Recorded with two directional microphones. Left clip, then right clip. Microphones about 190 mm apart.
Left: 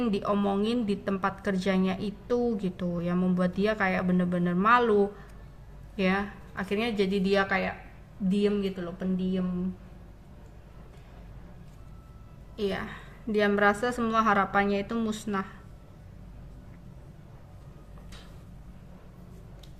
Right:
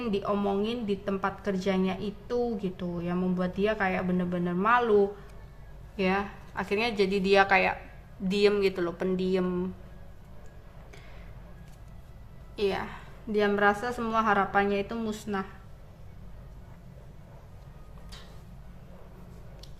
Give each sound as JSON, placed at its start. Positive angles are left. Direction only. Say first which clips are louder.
{"t": 0.0, "sound": "a woman's voice", "louder": "left 1 dB", "side_deg": 0}
{"t": 8.3, "sound": "speech", "louder": "right 4 dB", "side_deg": -30}
{"t": 12.5, "sound": "a woman's voice", "louder": "right 2 dB", "side_deg": -10}